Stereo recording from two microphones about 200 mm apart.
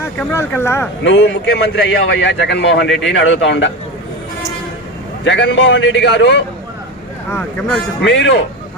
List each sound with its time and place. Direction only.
0.0 s speech: 10° left (ahead or behind)
1.0 s a man's voice: 65° left (ahead or behind)
5.2 s a man's voice: 65° left (ahead or behind)
8.0 s a man's voice: 65° left (ahead or behind)